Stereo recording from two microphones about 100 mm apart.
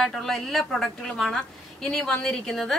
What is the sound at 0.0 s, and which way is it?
A woman's voice, centre (ahead or behind).